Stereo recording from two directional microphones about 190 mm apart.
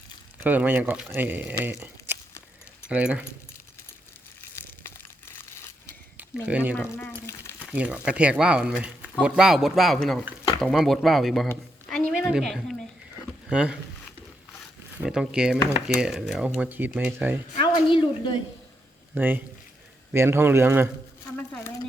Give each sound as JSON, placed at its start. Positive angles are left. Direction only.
{"t": 0.3, "sound": "speech", "side_deg": -10}
{"t": 4.4, "sound": "crumpling", "side_deg": 10}
{"t": 6.1, "sound": "speech", "side_deg": -5}
{"t": 6.7, "sound": "speech", "side_deg": 10}
{"t": 7.6, "sound": "speech", "side_deg": -5}
{"t": 11.4, "sound": "a sound", "side_deg": 5}
{"t": 13.5, "sound": "speech", "side_deg": -5}
{"t": 15.0, "sound": "speech", "side_deg": -5}
{"t": 17.8, "sound": "speech", "side_deg": 25}
{"t": 19.1, "sound": "speech", "side_deg": -10}
{"t": 21.3, "sound": "a sound", "side_deg": 10}